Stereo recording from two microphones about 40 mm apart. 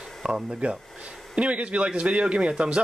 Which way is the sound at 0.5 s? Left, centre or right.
Right.